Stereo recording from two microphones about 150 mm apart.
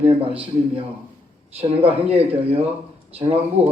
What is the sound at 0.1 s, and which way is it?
A man's voice, 35° right (ahead or behind).